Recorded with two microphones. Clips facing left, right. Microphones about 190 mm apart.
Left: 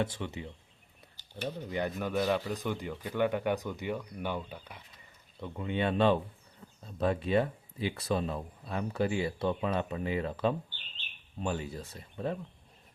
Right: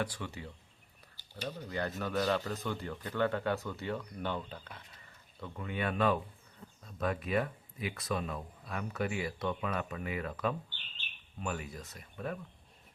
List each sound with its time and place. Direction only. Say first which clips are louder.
0.0 s speech: left 4 dB; 20° left (ahead or behind)
5.4 s speech: left 5 dB; 25° left (ahead or behind)